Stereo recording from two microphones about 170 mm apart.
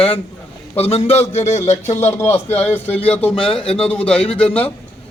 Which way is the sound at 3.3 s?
30° left (ahead or behind).